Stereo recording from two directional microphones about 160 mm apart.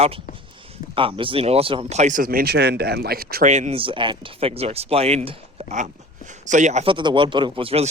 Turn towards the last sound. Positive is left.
turn(degrees=-35)  # may be behind; listen again after turning